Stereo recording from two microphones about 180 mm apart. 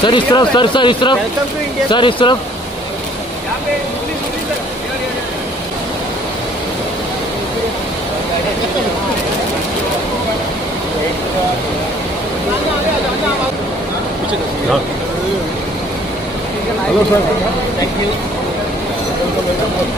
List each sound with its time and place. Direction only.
0.0 s speech: 25° left (ahead or behind)